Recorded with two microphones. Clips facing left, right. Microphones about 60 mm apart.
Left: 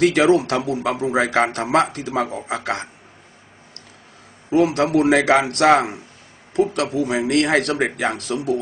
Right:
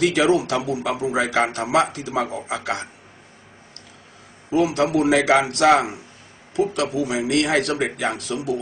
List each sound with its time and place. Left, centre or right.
0.0 s speech: left
4.5 s speech: left